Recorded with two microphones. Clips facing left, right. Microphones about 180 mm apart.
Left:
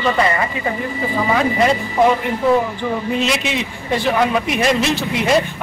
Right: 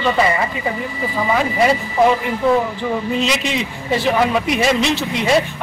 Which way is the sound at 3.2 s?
Centre (ahead or behind).